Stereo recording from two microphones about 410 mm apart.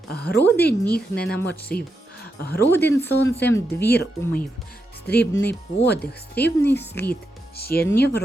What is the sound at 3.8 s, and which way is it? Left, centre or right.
Speech, left.